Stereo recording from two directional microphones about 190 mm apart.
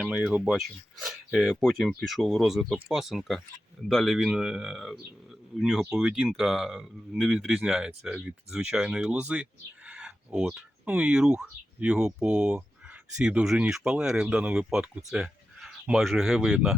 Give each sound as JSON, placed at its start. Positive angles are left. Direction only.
{"t": 0.0, "sound": "speech", "side_deg": -5}